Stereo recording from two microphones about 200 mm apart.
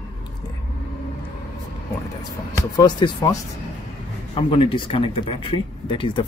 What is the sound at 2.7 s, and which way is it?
Speech, 20° left (ahead or behind).